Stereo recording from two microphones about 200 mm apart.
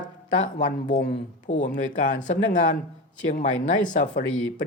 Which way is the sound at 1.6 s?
40° left (ahead or behind).